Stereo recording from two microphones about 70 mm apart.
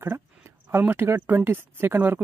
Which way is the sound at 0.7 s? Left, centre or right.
Right.